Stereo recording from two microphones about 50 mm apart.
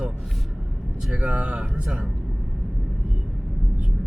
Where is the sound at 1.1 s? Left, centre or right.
Right.